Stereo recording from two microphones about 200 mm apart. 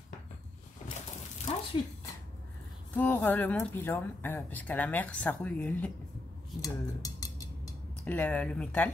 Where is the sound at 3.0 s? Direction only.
10° left (ahead or behind).